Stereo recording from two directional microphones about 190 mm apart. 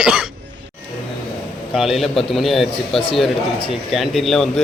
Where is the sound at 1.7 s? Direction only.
Centre (ahead or behind).